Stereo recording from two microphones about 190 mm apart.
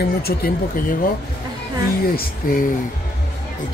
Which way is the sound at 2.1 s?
45° left (ahead or behind).